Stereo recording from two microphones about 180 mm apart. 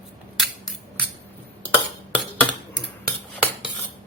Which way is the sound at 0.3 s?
Centre (ahead or behind).